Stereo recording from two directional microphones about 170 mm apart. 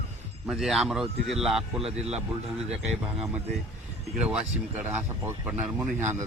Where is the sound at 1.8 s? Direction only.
35° right (ahead or behind).